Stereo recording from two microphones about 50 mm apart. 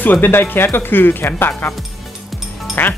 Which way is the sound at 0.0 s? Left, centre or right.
Left.